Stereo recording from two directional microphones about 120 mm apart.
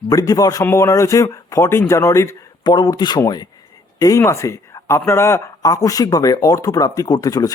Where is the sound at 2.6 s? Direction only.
35° left (ahead or behind).